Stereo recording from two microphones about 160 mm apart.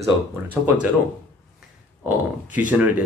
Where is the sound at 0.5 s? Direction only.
10° right (ahead or behind).